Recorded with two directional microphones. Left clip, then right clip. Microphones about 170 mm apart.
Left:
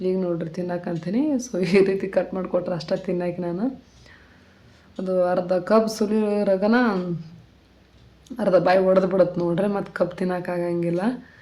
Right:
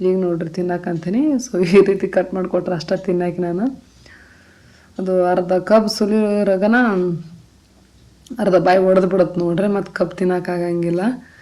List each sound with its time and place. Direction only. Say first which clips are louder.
0.0 s speech: right 6 dB; 15° right (ahead or behind)
4.9 s speech: right 5 dB; 20° right (ahead or behind)
8.4 s speech: right 4 dB; 20° right (ahead or behind)